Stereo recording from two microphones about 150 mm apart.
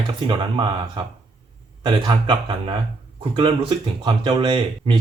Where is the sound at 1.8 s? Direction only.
30° right (ahead or behind).